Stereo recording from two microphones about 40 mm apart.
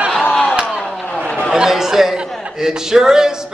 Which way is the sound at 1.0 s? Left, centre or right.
Left.